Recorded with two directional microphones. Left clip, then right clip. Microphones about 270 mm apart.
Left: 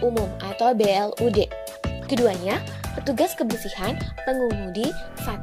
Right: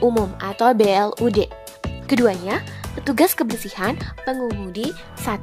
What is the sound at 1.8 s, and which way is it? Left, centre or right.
Music, centre.